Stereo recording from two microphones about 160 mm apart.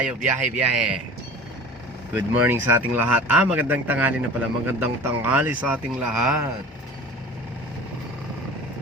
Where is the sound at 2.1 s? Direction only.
10° right (ahead or behind).